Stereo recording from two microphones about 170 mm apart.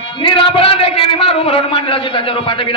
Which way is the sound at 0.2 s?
30° left (ahead or behind).